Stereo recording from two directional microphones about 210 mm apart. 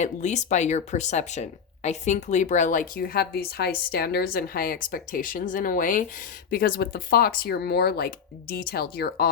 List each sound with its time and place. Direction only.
0.0 s speech: 35° left (ahead or behind)